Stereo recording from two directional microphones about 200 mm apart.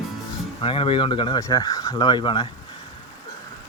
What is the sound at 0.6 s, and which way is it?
Speech, 25° left (ahead or behind).